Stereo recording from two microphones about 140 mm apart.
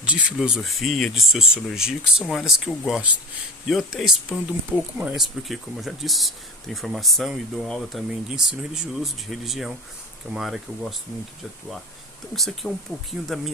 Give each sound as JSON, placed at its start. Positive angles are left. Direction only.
{"t": 0.0, "sound": "speech", "side_deg": -10}
{"t": 12.3, "sound": "speech", "side_deg": 0}